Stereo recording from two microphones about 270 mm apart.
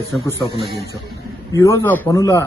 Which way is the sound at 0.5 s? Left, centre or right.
Centre.